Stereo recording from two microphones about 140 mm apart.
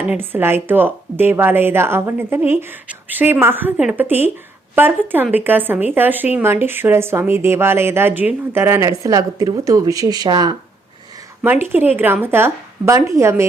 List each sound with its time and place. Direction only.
0.1 s speech: 15° right (ahead or behind)
11.4 s speech: 15° right (ahead or behind)